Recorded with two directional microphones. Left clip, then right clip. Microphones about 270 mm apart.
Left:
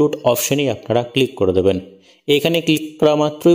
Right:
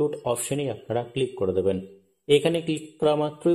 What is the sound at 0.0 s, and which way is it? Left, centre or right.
Speech, left.